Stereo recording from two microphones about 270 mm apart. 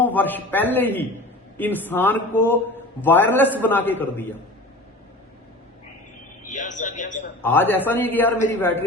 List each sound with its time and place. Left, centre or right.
0.0 s a man's voice: centre
6.4 s a man's voice: left
7.4 s a man's voice: centre